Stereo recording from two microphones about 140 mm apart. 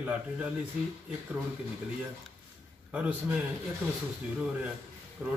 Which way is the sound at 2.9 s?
10° right (ahead or behind).